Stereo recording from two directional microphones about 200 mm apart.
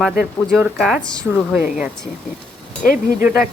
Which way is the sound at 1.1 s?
10° right (ahead or behind).